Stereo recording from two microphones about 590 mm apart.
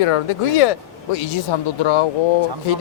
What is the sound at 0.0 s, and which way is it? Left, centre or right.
Speech, left.